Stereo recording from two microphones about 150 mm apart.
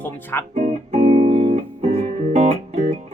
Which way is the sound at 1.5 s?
45° right (ahead or behind).